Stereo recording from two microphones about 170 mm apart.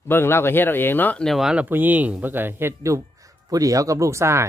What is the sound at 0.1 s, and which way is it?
Speech, 15° left (ahead or behind).